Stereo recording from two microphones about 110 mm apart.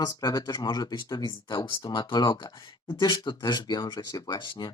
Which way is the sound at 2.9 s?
45° left (ahead or behind).